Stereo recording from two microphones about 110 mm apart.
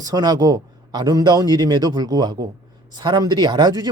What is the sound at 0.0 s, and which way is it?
Speech, 35° right (ahead or behind).